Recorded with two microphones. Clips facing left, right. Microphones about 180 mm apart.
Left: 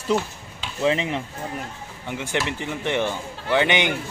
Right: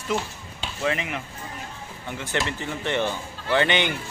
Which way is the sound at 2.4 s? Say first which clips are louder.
Left 2 dB; 15° left (ahead or behind).